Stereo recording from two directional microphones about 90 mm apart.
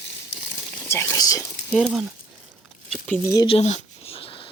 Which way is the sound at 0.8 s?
30° left (ahead or behind).